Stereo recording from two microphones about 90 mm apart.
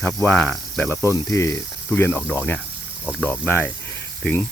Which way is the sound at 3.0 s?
10° right (ahead or behind).